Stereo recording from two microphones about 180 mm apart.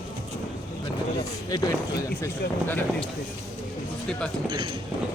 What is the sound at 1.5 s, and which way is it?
Speech, 20° left (ahead or behind).